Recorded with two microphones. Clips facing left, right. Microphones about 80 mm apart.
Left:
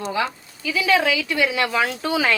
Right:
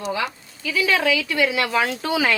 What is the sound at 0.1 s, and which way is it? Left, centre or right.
A woman's voice, left.